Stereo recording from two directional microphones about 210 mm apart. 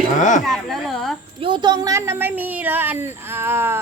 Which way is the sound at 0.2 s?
35° left (ahead or behind).